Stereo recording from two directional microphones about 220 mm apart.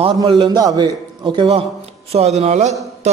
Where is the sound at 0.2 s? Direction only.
20° right (ahead or behind).